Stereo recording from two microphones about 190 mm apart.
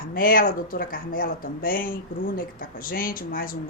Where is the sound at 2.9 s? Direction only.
50° left (ahead or behind).